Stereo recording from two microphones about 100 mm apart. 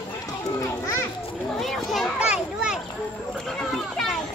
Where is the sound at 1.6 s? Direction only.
Centre (ahead or behind).